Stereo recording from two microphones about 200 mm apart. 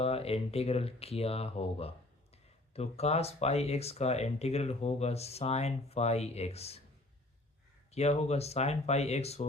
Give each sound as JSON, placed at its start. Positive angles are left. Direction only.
{"t": 0.0, "sound": "speech", "side_deg": 30}
{"t": 7.9, "sound": "speech", "side_deg": 30}